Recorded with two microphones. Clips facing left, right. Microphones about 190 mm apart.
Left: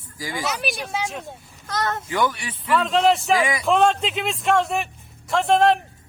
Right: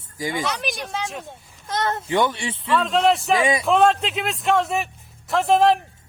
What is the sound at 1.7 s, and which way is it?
Speech, 25° right (ahead or behind).